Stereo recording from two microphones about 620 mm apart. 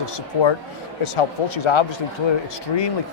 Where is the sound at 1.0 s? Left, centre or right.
Left.